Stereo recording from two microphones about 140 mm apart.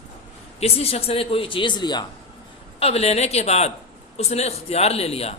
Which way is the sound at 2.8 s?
45° left (ahead or behind).